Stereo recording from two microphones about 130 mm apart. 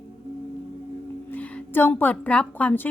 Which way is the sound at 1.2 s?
10° left (ahead or behind).